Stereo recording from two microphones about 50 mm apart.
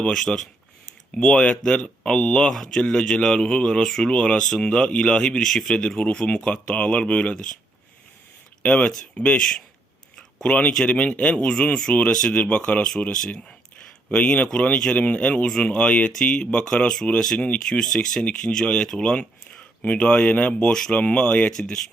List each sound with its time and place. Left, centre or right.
0.0 s speech: centre
8.6 s speech: left
10.2 s a sound: centre
10.5 s speech: left
17.3 s speech: left
17.7 s speech: centre
20.9 s speech: left